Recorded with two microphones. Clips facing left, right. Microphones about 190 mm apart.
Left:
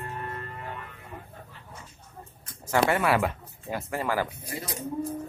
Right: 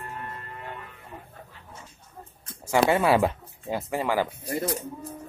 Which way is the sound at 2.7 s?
20° right (ahead or behind).